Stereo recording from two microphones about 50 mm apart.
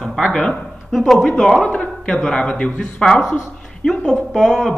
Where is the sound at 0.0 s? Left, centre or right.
Centre.